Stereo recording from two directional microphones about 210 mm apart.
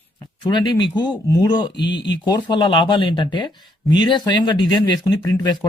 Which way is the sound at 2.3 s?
20° left (ahead or behind).